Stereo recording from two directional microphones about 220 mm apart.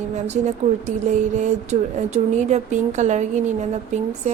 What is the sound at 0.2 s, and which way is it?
Speech, 30° right (ahead or behind).